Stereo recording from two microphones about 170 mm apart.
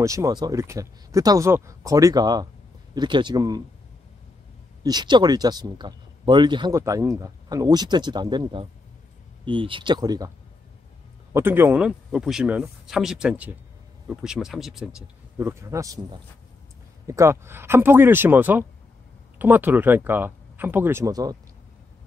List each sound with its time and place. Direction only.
0.0 s speech: 20° right (ahead or behind)
4.8 s speech: 25° right (ahead or behind)
11.3 s speech: 15° right (ahead or behind)
15.3 s speech: 15° right (ahead or behind)